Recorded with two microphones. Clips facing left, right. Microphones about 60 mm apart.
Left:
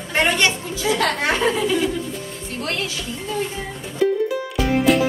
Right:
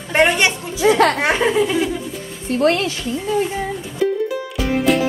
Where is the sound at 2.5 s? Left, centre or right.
Right.